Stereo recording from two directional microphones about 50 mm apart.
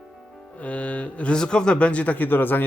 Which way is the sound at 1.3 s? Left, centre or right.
Centre.